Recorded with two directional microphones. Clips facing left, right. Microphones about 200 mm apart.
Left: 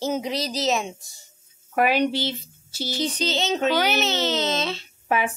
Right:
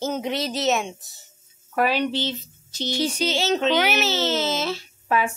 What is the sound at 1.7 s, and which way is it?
Speech, 15° left (ahead or behind).